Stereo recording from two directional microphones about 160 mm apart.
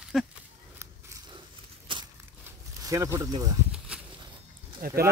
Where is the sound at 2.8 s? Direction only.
20° right (ahead or behind).